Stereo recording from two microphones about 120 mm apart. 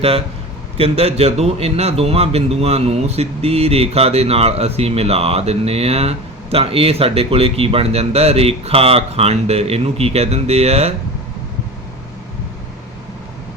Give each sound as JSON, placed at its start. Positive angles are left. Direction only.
{"t": 0.8, "sound": "a man's voice", "side_deg": -60}